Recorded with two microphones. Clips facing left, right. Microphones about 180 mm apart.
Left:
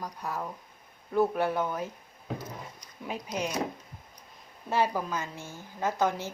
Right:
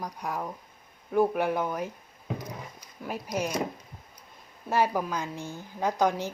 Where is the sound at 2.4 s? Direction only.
15° right (ahead or behind).